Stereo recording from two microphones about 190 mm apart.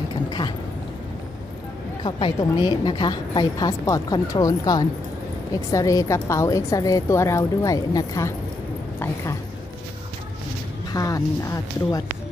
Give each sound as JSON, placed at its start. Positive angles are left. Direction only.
{"t": 2.0, "sound": "a woman's voice", "side_deg": 25}
{"t": 10.9, "sound": "a woman's voice", "side_deg": 20}